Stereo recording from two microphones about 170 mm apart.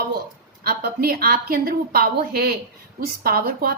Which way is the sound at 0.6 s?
60° right (ahead or behind).